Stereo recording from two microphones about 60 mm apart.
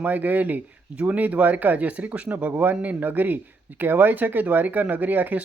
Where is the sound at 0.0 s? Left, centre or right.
Right.